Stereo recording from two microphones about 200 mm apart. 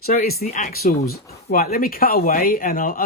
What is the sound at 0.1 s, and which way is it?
Speech, 50° left (ahead or behind).